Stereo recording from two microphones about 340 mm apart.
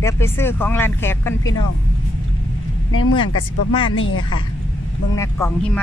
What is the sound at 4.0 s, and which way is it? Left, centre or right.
Speech, left.